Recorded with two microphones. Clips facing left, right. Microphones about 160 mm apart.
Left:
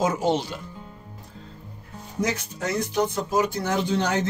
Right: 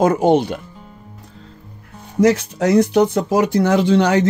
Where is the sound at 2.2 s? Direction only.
85° right.